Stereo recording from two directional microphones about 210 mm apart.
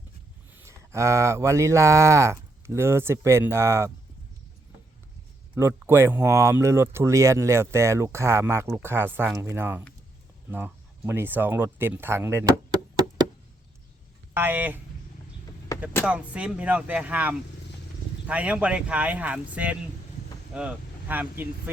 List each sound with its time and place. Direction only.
0.5 s cattle: 10° right (ahead or behind)
5.5 s speech: 10° right (ahead or behind)
14.3 s speech: 10° right (ahead or behind)
15.7 s a sound: 15° left (ahead or behind)
16.0 s speech: 5° right (ahead or behind)